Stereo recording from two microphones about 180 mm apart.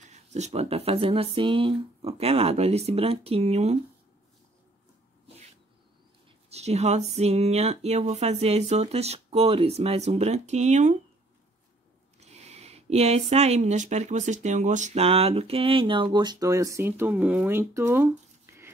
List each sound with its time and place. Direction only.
0.0 s speech: 40° right (ahead or behind)
6.5 s speech: 35° right (ahead or behind)
12.2 s speech: 35° right (ahead or behind); by 18.1 s 15° right (ahead or behind)